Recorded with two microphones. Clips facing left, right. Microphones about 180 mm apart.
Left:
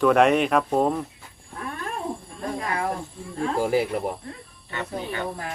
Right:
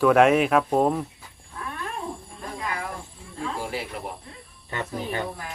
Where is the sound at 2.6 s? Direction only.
50° left (ahead or behind).